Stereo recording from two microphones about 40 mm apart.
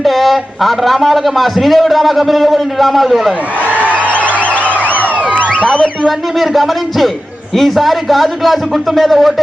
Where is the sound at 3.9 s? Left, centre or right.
Left.